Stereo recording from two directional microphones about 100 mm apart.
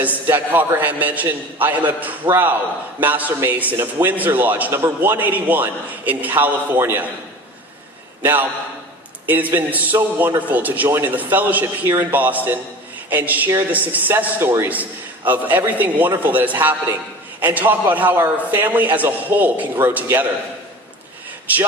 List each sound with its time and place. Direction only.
0.0 s a man's voice: 20° right (ahead or behind)
8.2 s a man's voice: 20° right (ahead or behind)
21.5 s a man's voice: 15° right (ahead or behind)